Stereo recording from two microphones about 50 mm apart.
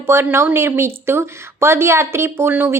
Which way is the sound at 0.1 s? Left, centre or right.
Right.